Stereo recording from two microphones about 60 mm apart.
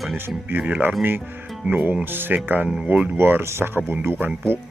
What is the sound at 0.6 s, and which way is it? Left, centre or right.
Speech, right.